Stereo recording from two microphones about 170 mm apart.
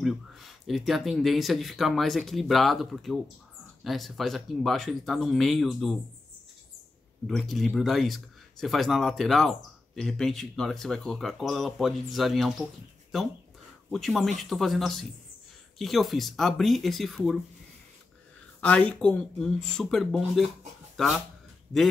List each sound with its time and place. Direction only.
0.0 s speech: centre (ahead or behind)
7.2 s speech: centre (ahead or behind)
18.6 s speech: 5° left (ahead or behind)